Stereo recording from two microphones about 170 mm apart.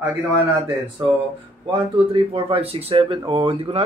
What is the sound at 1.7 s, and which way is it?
Speech, 30° right (ahead or behind).